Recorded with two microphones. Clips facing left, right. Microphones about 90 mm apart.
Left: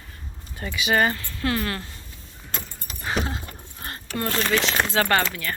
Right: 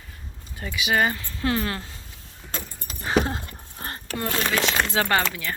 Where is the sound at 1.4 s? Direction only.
20° right (ahead or behind).